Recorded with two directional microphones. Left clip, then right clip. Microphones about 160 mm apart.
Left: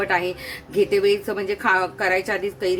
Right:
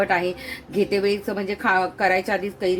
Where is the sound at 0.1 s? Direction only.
25° right (ahead or behind).